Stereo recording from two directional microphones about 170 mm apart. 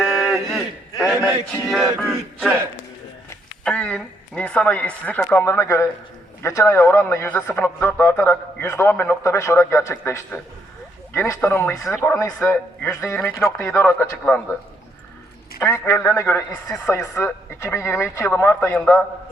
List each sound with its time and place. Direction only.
0.0 s a sound: centre (ahead or behind)
3.6 s speech: 5° left (ahead or behind)
15.5 s speech: 15° left (ahead or behind)